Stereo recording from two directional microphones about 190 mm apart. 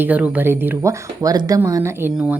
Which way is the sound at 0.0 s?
10° right (ahead or behind).